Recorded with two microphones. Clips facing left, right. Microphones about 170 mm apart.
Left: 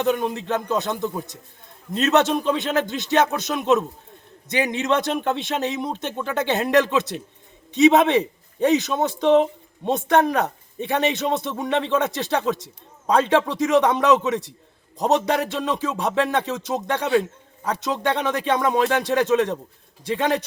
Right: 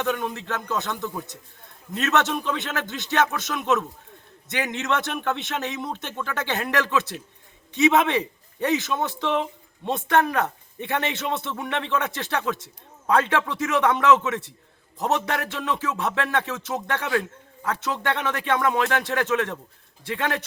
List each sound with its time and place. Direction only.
0.0 s music: 20° left (ahead or behind)
2.0 s a man's voice: 20° left (ahead or behind)
13.1 s music: 20° left (ahead or behind)